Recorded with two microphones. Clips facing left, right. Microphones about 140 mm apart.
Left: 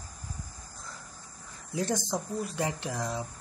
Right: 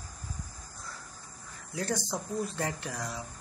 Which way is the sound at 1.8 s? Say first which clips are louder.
Left 3 dB; 20° left (ahead or behind).